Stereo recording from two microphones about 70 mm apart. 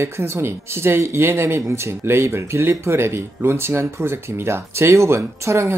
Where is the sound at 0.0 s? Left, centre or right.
Right.